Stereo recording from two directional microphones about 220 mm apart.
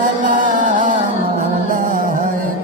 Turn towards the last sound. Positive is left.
turn(degrees=-40)  # may be behind; listen again after turning